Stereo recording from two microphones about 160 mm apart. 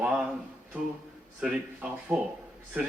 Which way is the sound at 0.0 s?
5° right (ahead or behind).